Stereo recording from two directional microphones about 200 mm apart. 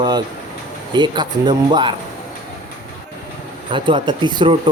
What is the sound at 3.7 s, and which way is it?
Speech, 25° right (ahead or behind).